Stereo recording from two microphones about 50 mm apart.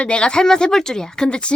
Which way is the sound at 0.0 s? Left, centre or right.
Centre.